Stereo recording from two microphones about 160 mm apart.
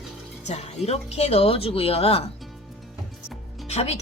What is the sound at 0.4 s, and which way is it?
Speech, 40° left (ahead or behind).